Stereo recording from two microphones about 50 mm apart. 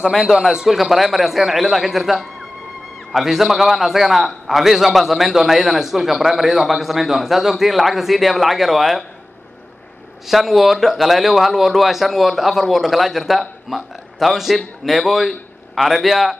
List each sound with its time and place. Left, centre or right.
0.3 s a man's voice: centre
10.2 s a man's voice: centre